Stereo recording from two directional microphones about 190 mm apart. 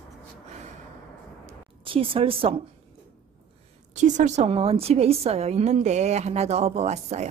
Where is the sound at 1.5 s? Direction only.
30° right (ahead or behind).